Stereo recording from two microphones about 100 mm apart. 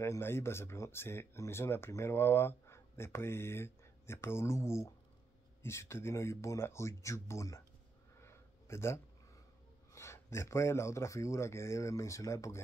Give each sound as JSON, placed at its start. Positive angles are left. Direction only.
{"t": 0.0, "sound": "speech", "side_deg": 25}
{"t": 8.2, "sound": "a sound", "side_deg": 25}
{"t": 9.9, "sound": "speech", "side_deg": 30}